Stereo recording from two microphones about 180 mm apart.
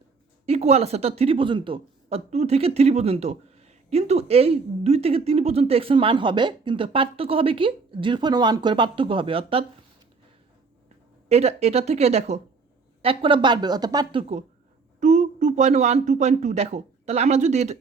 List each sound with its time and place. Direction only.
0.4 s speech: 35° right (ahead or behind)
11.3 s speech: 35° right (ahead or behind)
15.0 s speech: 40° right (ahead or behind)